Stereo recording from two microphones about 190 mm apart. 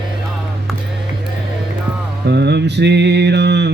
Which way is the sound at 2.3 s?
60° right (ahead or behind).